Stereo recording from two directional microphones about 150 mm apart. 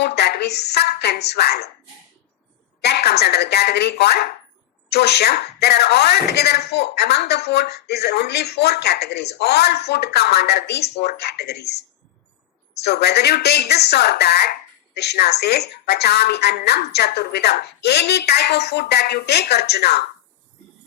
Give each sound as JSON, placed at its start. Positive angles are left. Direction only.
{"t": 0.0, "sound": "a woman's voice", "side_deg": 90}
{"t": 2.8, "sound": "speech", "side_deg": 90}
{"t": 12.8, "sound": "speech", "side_deg": 90}